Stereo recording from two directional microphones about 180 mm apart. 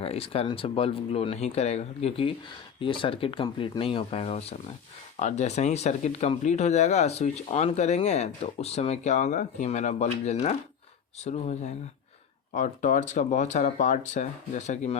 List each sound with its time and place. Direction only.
0.0 s speech: 35° left (ahead or behind)